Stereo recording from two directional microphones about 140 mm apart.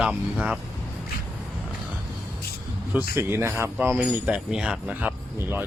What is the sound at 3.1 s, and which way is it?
Speech, 20° right (ahead or behind).